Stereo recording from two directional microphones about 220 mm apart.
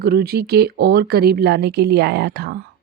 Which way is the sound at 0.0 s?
45° right (ahead or behind).